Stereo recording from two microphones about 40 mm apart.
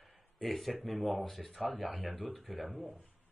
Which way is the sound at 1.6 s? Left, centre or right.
Centre.